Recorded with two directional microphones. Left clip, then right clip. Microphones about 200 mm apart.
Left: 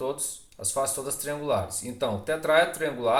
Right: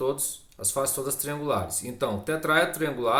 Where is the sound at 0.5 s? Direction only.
40° right (ahead or behind).